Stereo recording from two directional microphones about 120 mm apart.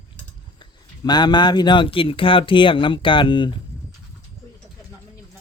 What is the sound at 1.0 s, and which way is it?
Speech, 35° left (ahead or behind).